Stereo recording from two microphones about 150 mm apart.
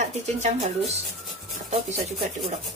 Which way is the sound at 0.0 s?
50° right (ahead or behind).